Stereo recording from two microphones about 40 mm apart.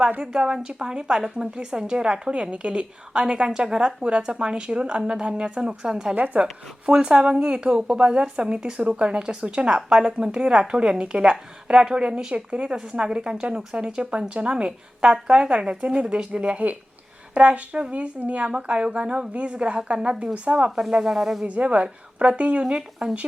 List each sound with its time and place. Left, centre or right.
0.2 s a woman's voice: centre
6.1 s a woman's voice: right
6.4 s a woman's voice: right
12.7 s a woman's voice: centre
21.0 s speech: centre
21.4 s a woman's voice: right